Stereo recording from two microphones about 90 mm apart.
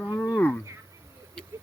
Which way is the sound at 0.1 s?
15° left (ahead or behind).